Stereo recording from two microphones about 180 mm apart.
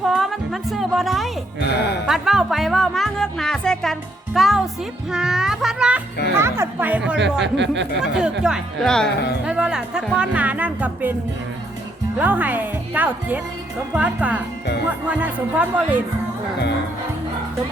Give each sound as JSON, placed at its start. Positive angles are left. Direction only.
{"t": 0.0, "sound": "music", "side_deg": 0}
{"t": 5.1, "sound": "children playing", "side_deg": -5}
{"t": 6.3, "sound": "music", "side_deg": -15}
{"t": 7.4, "sound": "speech", "side_deg": -75}
{"t": 8.0, "sound": "speech", "side_deg": -5}
{"t": 12.1, "sound": "speech", "side_deg": -10}